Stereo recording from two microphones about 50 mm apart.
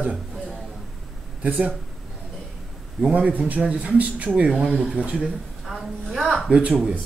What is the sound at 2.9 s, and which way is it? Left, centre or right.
Speech, centre.